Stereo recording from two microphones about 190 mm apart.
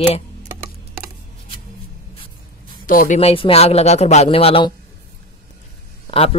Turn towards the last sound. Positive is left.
turn(degrees=30)  # may be behind; listen again after turning